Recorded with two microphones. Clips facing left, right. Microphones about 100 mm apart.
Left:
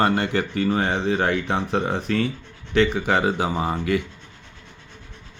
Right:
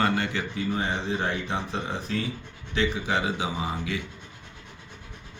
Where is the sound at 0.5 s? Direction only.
65° left (ahead or behind).